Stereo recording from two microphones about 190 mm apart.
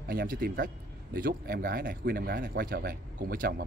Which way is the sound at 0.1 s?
50° right (ahead or behind).